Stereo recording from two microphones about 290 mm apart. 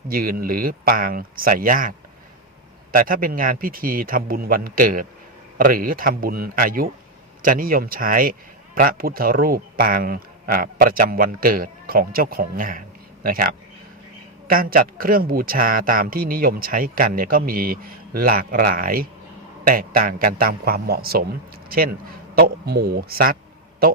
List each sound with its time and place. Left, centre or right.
0.1 s a man's voice: right
2.9 s a man's voice: right
22.4 s a man's voice: right